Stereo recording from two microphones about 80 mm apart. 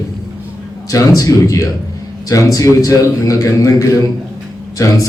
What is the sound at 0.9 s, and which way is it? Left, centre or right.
A man's voice, left.